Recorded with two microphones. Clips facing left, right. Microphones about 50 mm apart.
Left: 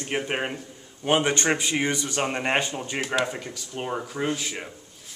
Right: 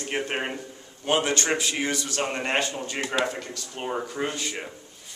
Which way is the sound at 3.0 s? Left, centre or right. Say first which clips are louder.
Even; centre.